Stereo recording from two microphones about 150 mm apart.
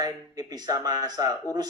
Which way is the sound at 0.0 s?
25° right (ahead or behind).